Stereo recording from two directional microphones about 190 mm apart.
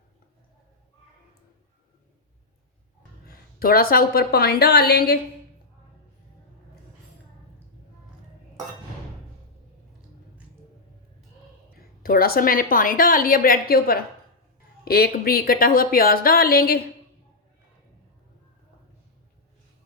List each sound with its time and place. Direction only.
3.2 s speech: 50° left (ahead or behind)
12.0 s speech: 50° left (ahead or behind)